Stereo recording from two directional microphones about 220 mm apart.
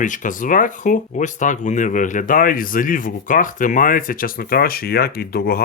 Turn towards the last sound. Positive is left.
turn(degrees=45)  # may be behind; listen again after turning